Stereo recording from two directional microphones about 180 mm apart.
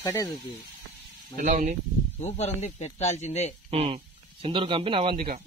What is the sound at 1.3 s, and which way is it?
Speech, 45° right (ahead or behind).